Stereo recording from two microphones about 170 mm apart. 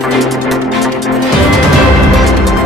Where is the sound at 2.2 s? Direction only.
Centre (ahead or behind).